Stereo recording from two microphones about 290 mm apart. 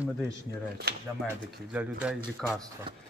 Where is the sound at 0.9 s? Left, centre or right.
Right.